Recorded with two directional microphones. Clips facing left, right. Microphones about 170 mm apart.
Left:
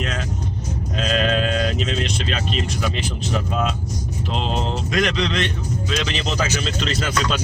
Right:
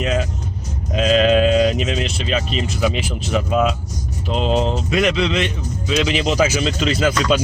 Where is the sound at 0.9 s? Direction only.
10° right (ahead or behind).